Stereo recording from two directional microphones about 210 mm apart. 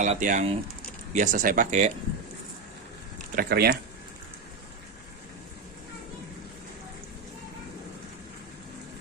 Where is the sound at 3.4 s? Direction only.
50° right (ahead or behind).